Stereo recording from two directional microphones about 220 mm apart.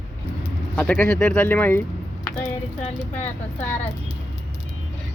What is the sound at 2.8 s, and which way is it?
Speech, 30° left (ahead or behind).